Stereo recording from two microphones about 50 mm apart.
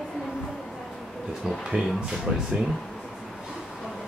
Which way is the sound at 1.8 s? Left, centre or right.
Centre.